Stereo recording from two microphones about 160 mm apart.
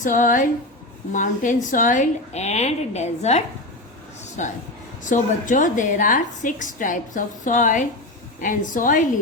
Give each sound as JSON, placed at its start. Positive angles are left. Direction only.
{"t": 0.0, "sound": "a woman's voice", "side_deg": 55}